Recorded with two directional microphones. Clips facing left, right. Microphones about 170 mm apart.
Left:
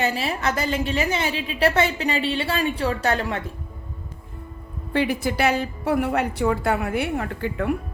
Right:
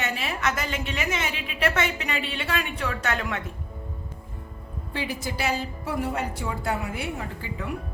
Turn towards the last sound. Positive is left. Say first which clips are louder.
# left 9 dB
turn(degrees=60)  # may be behind; listen again after turning